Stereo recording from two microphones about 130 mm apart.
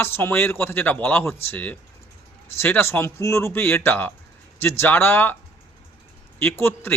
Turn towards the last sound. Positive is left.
turn(degrees=20)  # may be behind; listen again after turning